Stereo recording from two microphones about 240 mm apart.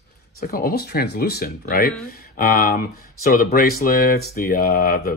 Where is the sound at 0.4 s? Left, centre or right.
Left.